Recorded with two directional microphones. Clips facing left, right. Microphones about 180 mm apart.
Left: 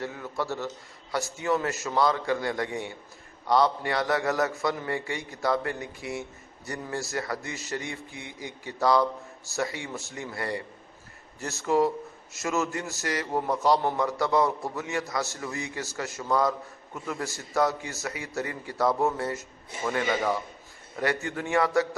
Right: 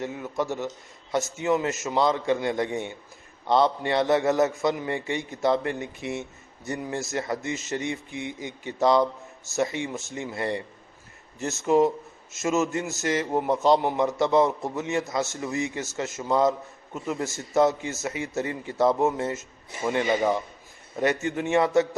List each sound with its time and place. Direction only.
0.0 s a man's voice: 20° right (ahead or behind)